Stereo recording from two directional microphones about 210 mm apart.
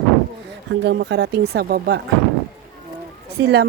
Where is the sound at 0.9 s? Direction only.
55° right (ahead or behind).